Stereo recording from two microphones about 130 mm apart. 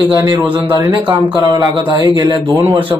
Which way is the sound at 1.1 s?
35° right (ahead or behind).